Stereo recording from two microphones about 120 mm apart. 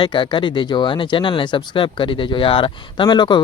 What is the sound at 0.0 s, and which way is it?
Speech, 45° left (ahead or behind).